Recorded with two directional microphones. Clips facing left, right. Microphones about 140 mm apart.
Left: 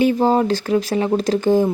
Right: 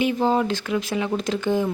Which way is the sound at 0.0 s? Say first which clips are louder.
Left 5 dB; 35° left (ahead or behind).